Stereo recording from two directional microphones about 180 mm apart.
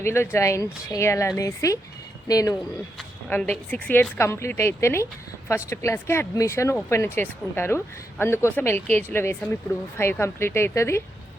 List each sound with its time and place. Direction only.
0.0 s speech: 15° left (ahead or behind)
3.0 s speech: 10° left (ahead or behind)